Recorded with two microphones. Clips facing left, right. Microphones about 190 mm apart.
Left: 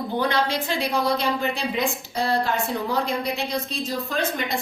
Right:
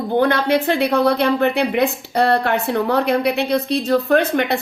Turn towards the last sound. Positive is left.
turn(degrees=-65)  # may be behind; listen again after turning